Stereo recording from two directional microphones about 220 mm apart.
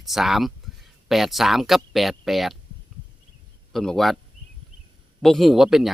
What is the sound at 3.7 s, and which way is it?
Speech, centre (ahead or behind).